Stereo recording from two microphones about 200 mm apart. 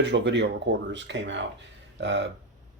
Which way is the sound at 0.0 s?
60° right (ahead or behind).